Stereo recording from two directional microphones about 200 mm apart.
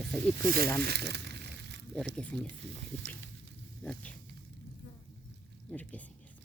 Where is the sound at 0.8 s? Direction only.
55° right (ahead or behind).